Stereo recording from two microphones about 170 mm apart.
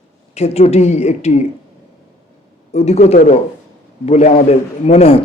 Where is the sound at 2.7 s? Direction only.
40° left (ahead or behind).